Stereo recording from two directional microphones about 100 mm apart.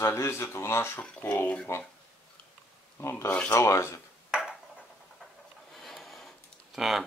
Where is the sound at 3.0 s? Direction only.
30° left (ahead or behind).